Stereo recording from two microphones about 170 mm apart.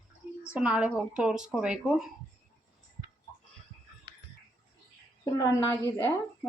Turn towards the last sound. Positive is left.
turn(degrees=20)  # may be behind; listen again after turning